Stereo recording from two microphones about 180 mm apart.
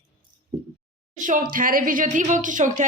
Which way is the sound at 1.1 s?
45° right (ahead or behind).